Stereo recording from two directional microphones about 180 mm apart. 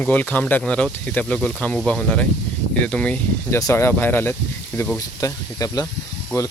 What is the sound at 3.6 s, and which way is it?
Speech, 15° left (ahead or behind).